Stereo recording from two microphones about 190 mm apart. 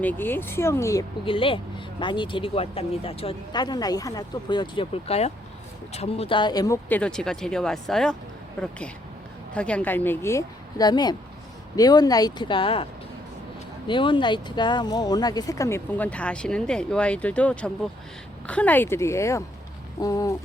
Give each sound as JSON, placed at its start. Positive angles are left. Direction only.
{"t": 0.0, "sound": "speech", "side_deg": 10}
{"t": 1.2, "sound": "speech", "side_deg": 30}
{"t": 6.8, "sound": "speech", "side_deg": 5}
{"t": 9.5, "sound": "speech", "side_deg": 5}